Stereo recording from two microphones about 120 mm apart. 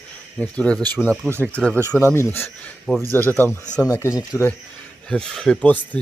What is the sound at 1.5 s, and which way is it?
Speech, 10° left (ahead or behind).